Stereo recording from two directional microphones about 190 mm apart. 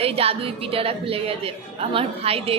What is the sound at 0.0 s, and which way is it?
A woman's voice, 30° right (ahead or behind).